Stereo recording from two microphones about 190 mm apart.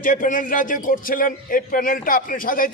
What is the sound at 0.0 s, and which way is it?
A man's voice, 45° left (ahead or behind).